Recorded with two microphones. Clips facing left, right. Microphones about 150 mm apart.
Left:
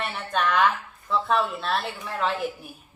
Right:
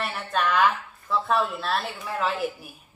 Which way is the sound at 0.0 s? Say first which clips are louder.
Even; centre (ahead or behind).